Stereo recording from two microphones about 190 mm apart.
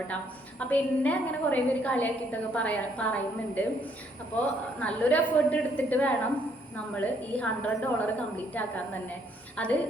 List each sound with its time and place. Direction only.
0.6 s a woman's voice: 5° left (ahead or behind)